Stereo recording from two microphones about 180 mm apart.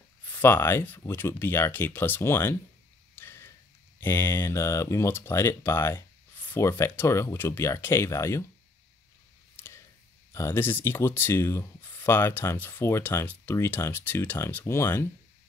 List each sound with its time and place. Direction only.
0.4 s speech: 15° left (ahead or behind)
3.2 s a sound: 15° left (ahead or behind)
4.0 s speech: 15° left (ahead or behind)
10.3 s speech: 15° left (ahead or behind)